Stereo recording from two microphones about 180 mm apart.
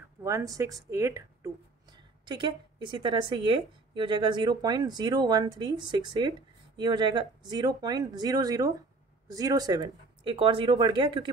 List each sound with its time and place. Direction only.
0.2 s a woman's voice: 20° right (ahead or behind)